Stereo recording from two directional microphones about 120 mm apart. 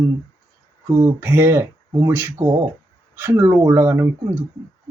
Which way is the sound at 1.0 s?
20° right (ahead or behind).